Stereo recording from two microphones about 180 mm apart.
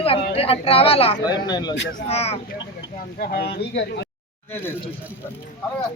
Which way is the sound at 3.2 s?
65° left (ahead or behind).